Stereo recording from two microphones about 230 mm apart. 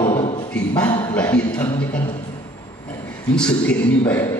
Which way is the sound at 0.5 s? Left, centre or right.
Centre.